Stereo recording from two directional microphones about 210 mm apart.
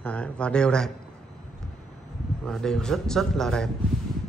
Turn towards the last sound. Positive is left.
turn(degrees=5)  # may be behind; listen again after turning